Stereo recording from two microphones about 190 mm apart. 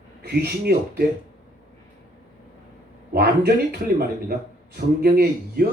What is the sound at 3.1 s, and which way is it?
Speech, 60° right (ahead or behind).